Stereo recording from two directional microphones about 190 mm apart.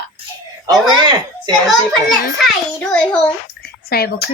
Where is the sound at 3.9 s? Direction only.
55° left (ahead or behind).